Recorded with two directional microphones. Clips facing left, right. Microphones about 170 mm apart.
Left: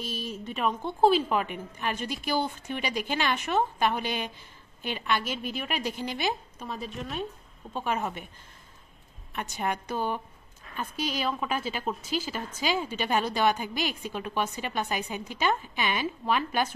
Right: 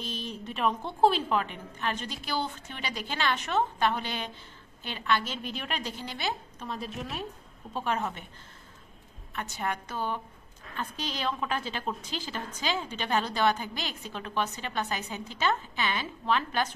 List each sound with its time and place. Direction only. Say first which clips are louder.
0.0 s a woman's voice: left 2 dB; 5° left (ahead or behind)
6.7 s a woman's voice: left 1 dB; centre (ahead or behind)
9.3 s a woman's voice: left 2 dB; 20° left (ahead or behind)